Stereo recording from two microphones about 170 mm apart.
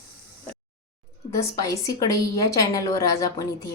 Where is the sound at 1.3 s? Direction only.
20° left (ahead or behind).